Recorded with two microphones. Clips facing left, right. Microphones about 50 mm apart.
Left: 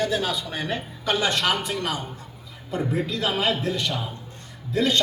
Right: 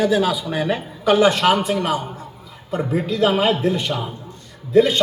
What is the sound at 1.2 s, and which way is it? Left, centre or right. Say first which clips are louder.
A man's voice: right 8 dB; right.